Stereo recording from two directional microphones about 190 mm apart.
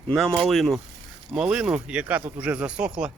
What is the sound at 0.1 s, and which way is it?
Speech, centre (ahead or behind).